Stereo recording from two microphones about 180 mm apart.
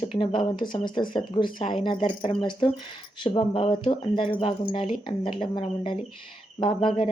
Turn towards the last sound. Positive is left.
turn(degrees=30)  # may be behind; listen again after turning